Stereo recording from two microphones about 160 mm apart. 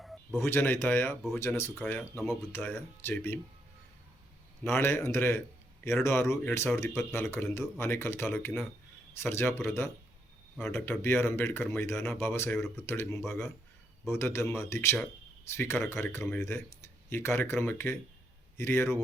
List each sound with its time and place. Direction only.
0.0 s a sound: centre (ahead or behind)
0.3 s speech: 15° left (ahead or behind)
4.6 s speech: 15° left (ahead or behind)